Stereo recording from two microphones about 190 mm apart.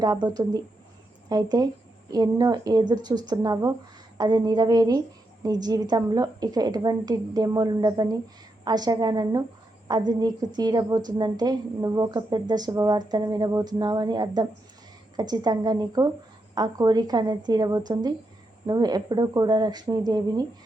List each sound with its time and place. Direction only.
0.0 s a woman's voice: 20° right (ahead or behind)